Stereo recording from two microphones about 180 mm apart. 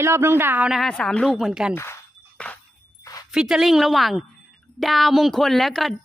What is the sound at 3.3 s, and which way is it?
Speech, 5° right (ahead or behind).